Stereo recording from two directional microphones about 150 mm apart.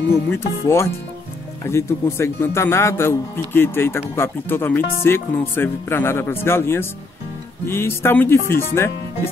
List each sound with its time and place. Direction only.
0.1 s speech: 15° left (ahead or behind)